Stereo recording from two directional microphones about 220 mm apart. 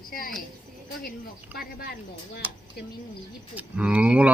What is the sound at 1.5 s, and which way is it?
Speech, 45° left (ahead or behind).